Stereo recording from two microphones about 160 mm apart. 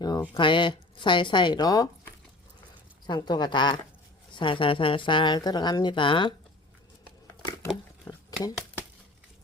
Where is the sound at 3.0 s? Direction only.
25° left (ahead or behind).